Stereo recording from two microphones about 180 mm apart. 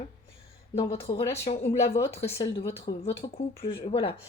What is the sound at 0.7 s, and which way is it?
Speech, 35° left (ahead or behind).